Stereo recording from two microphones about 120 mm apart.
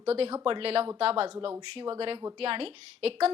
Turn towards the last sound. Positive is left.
turn(degrees=-55)  # may be behind; listen again after turning